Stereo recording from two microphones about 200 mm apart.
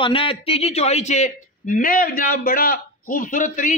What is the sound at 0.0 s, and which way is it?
A man's voice, 25° left (ahead or behind).